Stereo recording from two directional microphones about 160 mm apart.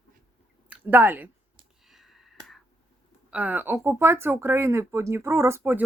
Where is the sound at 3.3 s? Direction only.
10° right (ahead or behind).